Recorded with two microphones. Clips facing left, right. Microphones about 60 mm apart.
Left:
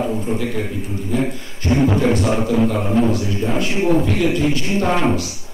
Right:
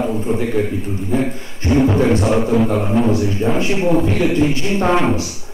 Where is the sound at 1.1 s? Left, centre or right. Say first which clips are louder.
Right 2 dB; right.